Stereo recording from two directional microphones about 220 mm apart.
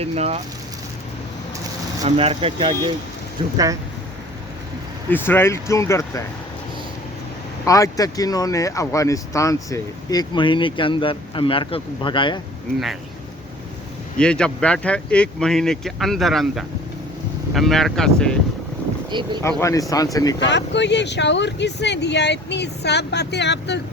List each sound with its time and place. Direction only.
0.0 s speech: 30° right (ahead or behind)
2.0 s speech: 25° right (ahead or behind)
5.1 s speech: 10° left (ahead or behind)
7.6 s speech: 15° left (ahead or behind)
14.2 s speech: 5° left (ahead or behind)
19.4 s speech: 10° left (ahead or behind)
20.4 s speech: 55° left (ahead or behind)